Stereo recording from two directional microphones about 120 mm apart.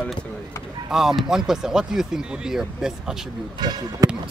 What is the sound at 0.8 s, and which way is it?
Speech, 5° right (ahead or behind).